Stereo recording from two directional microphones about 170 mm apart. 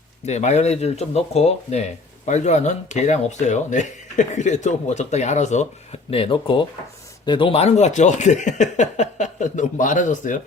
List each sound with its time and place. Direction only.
0.3 s speech: 40° left (ahead or behind)
6.1 s speech: 30° left (ahead or behind); by 10.4 s 50° left (ahead or behind)